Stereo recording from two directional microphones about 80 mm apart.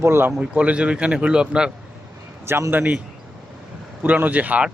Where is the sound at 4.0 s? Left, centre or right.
Right.